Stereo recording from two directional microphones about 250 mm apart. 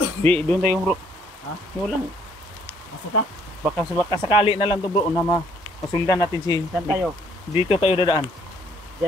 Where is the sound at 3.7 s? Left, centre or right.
Centre.